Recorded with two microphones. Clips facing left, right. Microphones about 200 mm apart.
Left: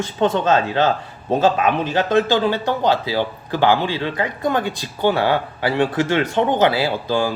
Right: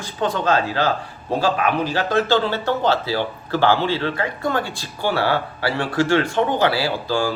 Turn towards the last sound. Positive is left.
turn(degrees=20)  # may be behind; listen again after turning